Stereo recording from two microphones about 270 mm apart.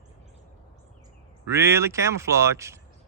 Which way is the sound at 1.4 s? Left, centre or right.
Centre.